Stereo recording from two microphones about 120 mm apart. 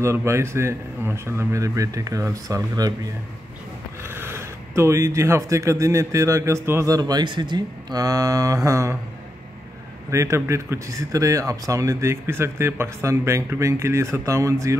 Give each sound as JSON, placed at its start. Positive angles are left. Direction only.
{"t": 0.0, "sound": "speech", "side_deg": -25}
{"t": 4.0, "sound": "speech", "side_deg": -20}
{"t": 10.1, "sound": "speech", "side_deg": -25}